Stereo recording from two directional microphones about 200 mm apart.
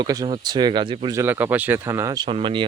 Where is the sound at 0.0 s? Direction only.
20° right (ahead or behind).